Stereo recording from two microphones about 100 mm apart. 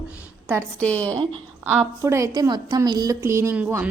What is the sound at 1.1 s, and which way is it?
Speech, 65° right (ahead or behind).